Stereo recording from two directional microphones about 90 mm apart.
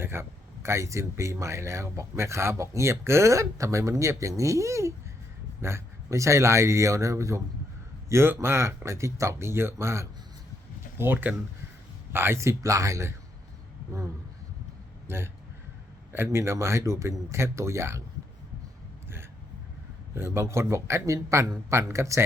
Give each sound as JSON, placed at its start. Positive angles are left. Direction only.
{"t": 0.0, "sound": "speech", "side_deg": -25}
{"t": 15.0, "sound": "a man's voice", "side_deg": -25}
{"t": 20.1, "sound": "speech", "side_deg": -30}